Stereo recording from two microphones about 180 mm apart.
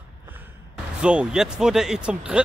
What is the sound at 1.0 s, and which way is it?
Speech, 5° right (ahead or behind).